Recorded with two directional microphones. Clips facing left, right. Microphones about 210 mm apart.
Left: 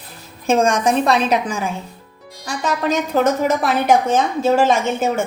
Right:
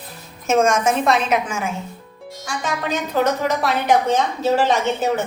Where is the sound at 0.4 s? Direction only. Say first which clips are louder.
Left 1 dB; 35° left (ahead or behind).